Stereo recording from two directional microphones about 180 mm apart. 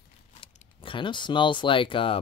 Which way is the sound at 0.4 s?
30° left (ahead or behind).